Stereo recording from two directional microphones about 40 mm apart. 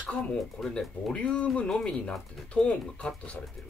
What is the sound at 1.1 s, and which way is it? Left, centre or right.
Speech, left.